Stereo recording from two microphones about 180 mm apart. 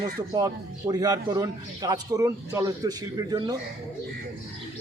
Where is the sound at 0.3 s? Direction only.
20° right (ahead or behind).